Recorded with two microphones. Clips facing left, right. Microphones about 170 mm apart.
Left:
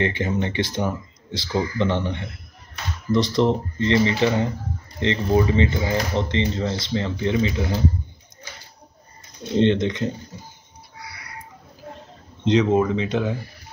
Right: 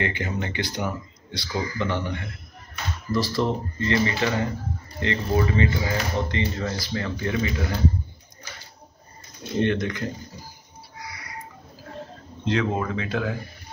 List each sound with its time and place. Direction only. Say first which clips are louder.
0.0 s speech: left 5 dB; 25° left (ahead or behind)
9.6 s speech: left 5 dB; 20° left (ahead or behind)
12.4 s speech: left 7 dB; 20° left (ahead or behind)